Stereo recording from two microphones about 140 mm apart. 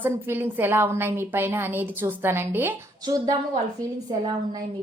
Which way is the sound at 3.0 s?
25° right (ahead or behind).